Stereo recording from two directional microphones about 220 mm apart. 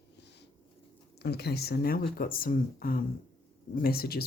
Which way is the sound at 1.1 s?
50° left (ahead or behind).